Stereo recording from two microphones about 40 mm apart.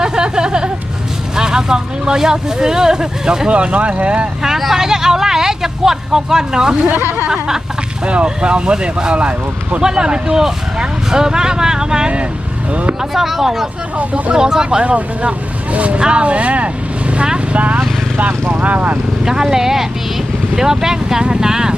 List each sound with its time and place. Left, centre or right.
0.0 s vehicle: centre
1.4 s speech: centre
3.5 s speech: right
4.4 s speech: centre
7.3 s a sound: centre
8.0 s speech: right
12.7 s speech: right
13.0 s speech: centre
14.0 s speech: right
14.3 s speech: centre
14.8 s speech: right
18.2 s speech: right
19.2 s speech: centre